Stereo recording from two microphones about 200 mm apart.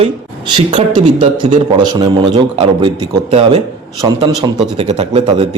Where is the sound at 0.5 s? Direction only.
25° right (ahead or behind).